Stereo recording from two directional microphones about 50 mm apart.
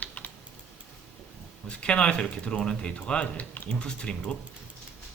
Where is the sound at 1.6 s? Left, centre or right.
Left.